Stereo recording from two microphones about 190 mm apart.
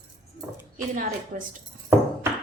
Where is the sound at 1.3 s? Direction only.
45° right (ahead or behind).